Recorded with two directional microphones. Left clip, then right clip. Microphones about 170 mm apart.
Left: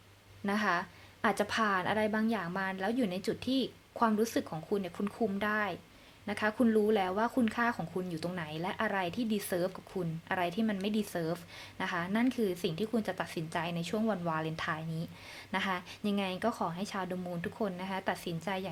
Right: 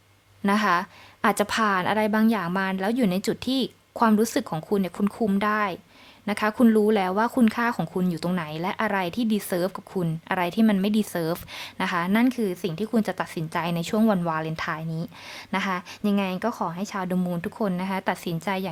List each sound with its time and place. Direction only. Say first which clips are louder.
0.4 s speech: right 9 dB; 25° right (ahead or behind)